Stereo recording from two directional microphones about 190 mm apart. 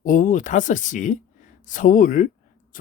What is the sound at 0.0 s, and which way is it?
Speech, 45° left (ahead or behind).